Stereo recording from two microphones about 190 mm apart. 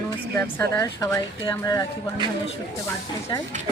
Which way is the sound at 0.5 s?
15° left (ahead or behind).